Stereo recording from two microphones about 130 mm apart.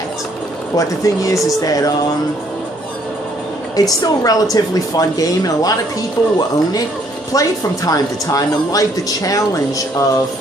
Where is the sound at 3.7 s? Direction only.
30° left (ahead or behind).